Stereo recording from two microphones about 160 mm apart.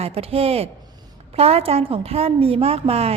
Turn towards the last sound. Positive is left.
turn(degrees=-40)  # may be behind; listen again after turning